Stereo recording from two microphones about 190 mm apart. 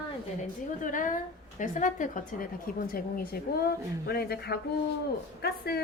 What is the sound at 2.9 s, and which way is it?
A woman's voice, 55° left (ahead or behind).